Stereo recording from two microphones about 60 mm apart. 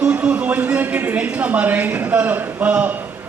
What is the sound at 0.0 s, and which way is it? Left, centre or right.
A man's voice, right.